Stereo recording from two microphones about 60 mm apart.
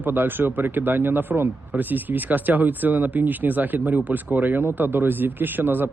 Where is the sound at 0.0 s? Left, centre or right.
Right.